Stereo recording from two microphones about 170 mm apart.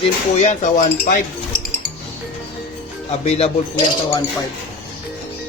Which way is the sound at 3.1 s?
40° left (ahead or behind).